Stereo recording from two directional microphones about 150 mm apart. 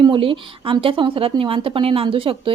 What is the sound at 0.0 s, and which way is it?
A woman's voice, 35° right (ahead or behind).